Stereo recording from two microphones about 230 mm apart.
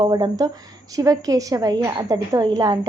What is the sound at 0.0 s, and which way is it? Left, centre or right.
A woman's voice, centre.